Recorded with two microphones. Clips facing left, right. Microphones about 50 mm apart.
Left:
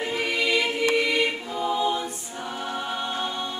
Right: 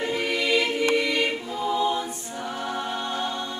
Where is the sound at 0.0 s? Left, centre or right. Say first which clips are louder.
Even; centre.